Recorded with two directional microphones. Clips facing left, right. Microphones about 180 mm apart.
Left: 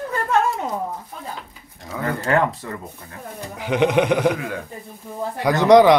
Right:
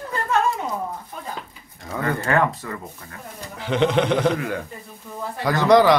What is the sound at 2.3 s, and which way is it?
Speech, 15° left (ahead or behind).